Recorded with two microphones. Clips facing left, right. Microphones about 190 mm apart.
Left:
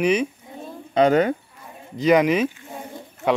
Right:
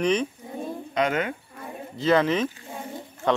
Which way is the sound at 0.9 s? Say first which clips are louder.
Left 8 dB; 35° left (ahead or behind).